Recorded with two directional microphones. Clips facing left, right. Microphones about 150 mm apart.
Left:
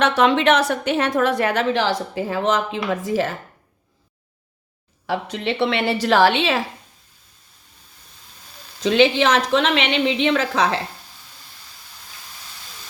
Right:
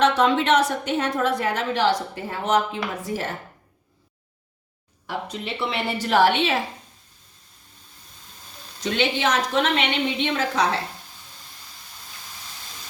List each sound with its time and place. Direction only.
0.0 s a woman's voice: 90° left
5.0 s a woman's voice: 90° left
8.8 s a woman's voice: 90° left